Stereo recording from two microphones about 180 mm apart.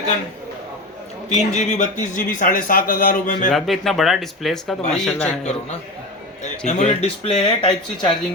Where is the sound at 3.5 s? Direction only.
Centre (ahead or behind).